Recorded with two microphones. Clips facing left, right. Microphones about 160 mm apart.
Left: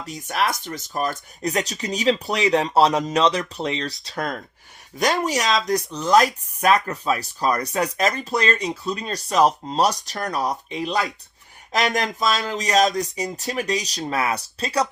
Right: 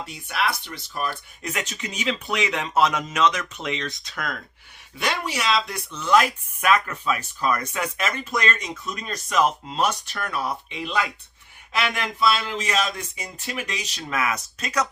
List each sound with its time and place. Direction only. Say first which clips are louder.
0.0 s speech: left 2 dB; 40° left (ahead or behind)